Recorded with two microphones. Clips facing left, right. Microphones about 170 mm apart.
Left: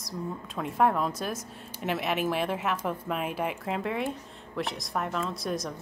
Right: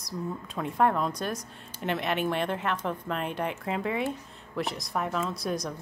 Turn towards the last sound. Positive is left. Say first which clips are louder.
# right 1 dB
turn(degrees=0)  # may be behind; listen again after turning